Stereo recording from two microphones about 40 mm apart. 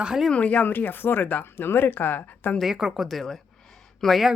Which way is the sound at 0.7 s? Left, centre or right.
Left.